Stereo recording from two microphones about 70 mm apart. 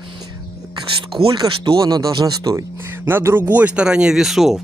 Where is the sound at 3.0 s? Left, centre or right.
Right; by 4.6 s centre.